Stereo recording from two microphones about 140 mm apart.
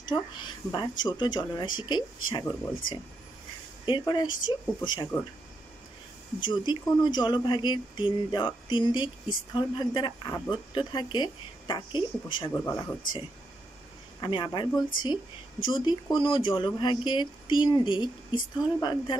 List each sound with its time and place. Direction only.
0.1 s speech: 30° left (ahead or behind)
6.4 s speech: 30° left (ahead or behind)
12.4 s speech: 20° left (ahead or behind)
14.2 s speech: 30° left (ahead or behind)